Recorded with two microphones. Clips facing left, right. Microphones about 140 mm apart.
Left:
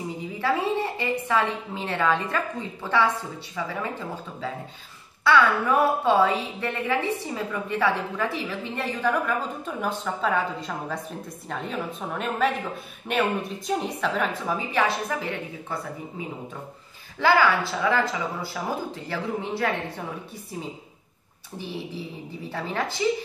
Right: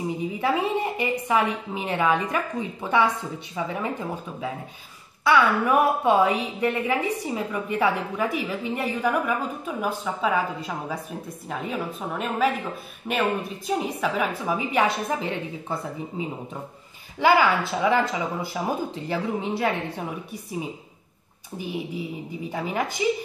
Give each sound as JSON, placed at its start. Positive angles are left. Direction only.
{"t": 0.4, "sound": "a woman's voice", "side_deg": -15}
{"t": 21.5, "sound": "a woman's voice", "side_deg": -15}